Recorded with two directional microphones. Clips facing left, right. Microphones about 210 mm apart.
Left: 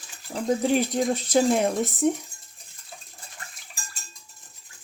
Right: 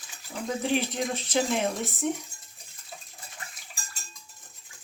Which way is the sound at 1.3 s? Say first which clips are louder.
Left 6 dB; 40° left (ahead or behind).